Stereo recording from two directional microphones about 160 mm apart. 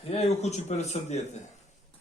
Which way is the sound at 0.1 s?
40° left (ahead or behind).